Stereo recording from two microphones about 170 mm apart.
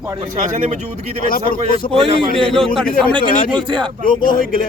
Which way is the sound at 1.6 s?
30° right (ahead or behind).